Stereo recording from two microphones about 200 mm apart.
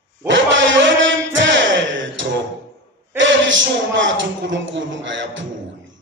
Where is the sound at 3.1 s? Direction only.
65° right (ahead or behind).